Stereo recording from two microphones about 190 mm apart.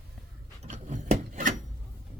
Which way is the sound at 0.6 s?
40° right (ahead or behind).